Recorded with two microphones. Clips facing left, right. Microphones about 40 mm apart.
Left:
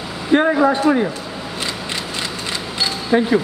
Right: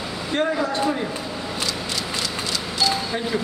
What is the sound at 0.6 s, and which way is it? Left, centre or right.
Speech, left.